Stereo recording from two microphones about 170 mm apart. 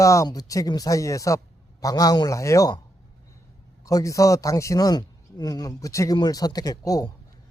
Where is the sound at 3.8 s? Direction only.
20° left (ahead or behind).